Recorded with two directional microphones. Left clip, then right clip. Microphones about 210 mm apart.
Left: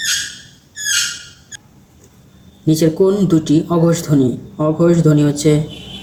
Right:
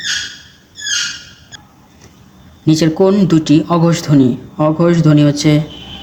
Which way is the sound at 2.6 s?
40° right (ahead or behind).